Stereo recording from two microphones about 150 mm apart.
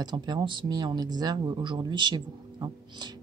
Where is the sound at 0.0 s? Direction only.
30° right (ahead or behind).